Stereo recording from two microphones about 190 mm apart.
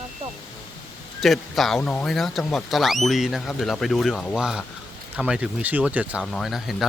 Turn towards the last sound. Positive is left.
turn(degrees=0)  # may be behind; listen again after turning